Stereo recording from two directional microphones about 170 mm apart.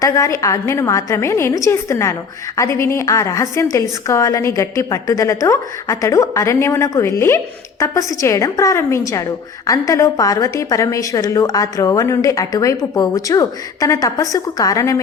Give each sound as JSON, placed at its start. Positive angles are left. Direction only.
{"t": 0.0, "sound": "a woman's voice", "side_deg": 20}